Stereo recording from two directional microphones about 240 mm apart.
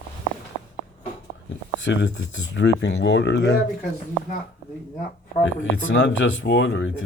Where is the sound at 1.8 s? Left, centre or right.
Left.